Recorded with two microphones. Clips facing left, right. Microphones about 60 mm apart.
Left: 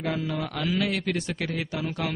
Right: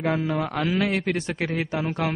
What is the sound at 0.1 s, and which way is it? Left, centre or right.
A man's voice, right.